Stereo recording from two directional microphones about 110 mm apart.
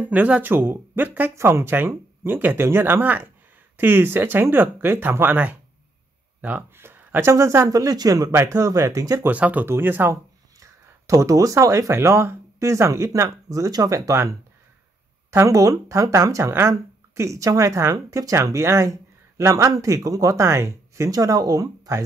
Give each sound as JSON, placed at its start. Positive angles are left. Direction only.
{"t": 0.0, "sound": "speech", "side_deg": -15}
{"t": 9.3, "sound": "speech", "side_deg": -15}
{"t": 10.6, "sound": "speech", "side_deg": -30}
{"t": 15.3, "sound": "speech", "side_deg": -30}